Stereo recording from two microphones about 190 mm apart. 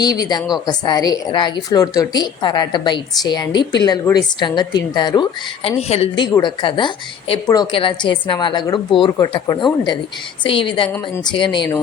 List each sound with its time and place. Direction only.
0.0 s speech: 20° left (ahead or behind)
10.8 s speech: 10° left (ahead or behind)
11.2 s speech: 25° left (ahead or behind)